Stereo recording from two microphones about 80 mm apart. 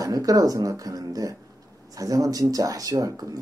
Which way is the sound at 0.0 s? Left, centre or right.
Right.